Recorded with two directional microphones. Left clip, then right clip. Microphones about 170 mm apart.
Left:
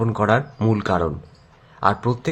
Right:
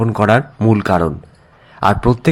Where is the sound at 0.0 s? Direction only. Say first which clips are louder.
Right 6 dB; 20° right (ahead or behind).